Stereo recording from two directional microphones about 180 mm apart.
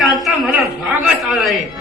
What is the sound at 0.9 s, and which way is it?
Speech, 5° right (ahead or behind).